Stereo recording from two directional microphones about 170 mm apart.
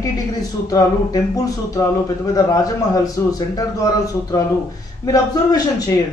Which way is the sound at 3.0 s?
20° left (ahead or behind).